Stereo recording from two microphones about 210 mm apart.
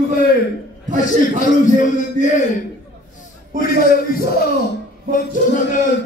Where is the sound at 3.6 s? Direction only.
45° left (ahead or behind).